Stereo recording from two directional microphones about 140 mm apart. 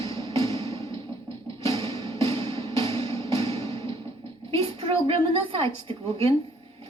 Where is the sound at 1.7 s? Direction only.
30° right (ahead or behind).